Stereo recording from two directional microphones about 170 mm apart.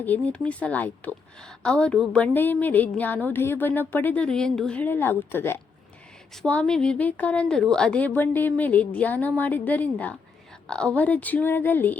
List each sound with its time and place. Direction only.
0.0 s speech: 10° left (ahead or behind)